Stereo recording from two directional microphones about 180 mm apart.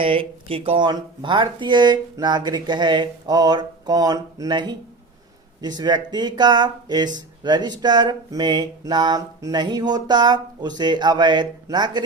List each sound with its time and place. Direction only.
0.0 s speech: 30° right (ahead or behind)